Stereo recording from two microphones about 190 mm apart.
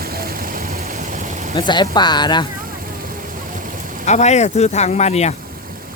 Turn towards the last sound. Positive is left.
turn(degrees=35)  # may be behind; listen again after turning